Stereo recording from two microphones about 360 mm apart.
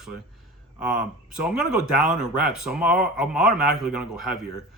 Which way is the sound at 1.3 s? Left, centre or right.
Centre.